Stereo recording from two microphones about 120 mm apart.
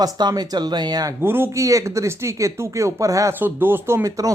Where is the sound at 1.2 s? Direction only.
20° right (ahead or behind).